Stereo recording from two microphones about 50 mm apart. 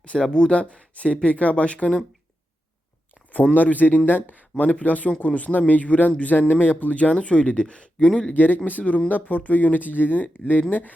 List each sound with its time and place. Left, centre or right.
0.0 s speech: left
3.5 s speech: left; by 8.3 s centre
8.3 s speech: left